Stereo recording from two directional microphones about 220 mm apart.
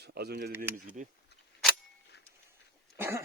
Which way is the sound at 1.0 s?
35° right (ahead or behind).